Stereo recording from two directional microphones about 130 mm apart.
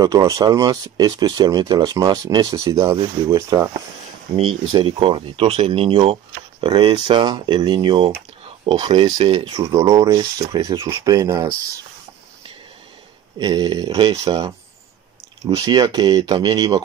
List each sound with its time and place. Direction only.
0.0 s speech: 25° right (ahead or behind)
4.4 s a man's voice: 45° right (ahead or behind)
9.2 s a man's voice: 45° right (ahead or behind)
9.6 s speech: 25° right (ahead or behind)
13.4 s speech: 30° right (ahead or behind)